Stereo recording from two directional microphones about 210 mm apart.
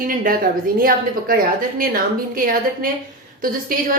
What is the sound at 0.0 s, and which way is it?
A woman's voice, 45° right (ahead or behind).